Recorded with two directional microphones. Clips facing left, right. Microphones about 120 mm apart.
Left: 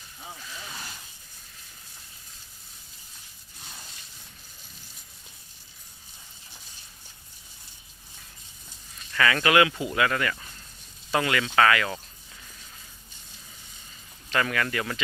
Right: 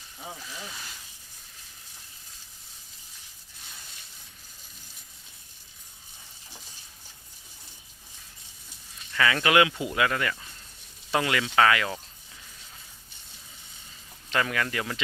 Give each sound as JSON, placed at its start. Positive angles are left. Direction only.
{"t": 9.1, "sound": "speech", "side_deg": -15}
{"t": 14.3, "sound": "speech", "side_deg": -15}